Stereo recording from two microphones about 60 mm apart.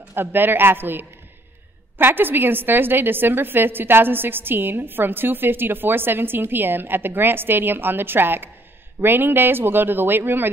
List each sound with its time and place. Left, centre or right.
0.1 s a woman's voice: right